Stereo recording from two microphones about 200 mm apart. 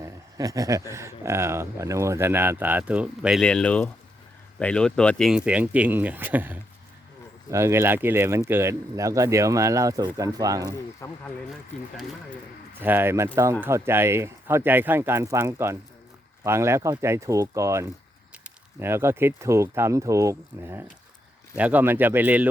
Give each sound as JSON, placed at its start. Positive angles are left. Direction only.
{"t": 0.0, "sound": "speech", "side_deg": -15}
{"t": 11.0, "sound": "speech", "side_deg": 15}
{"t": 12.8, "sound": "speech", "side_deg": -10}